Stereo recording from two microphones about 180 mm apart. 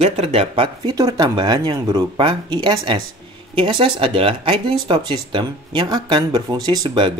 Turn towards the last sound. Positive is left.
turn(degrees=-25)  # may be behind; listen again after turning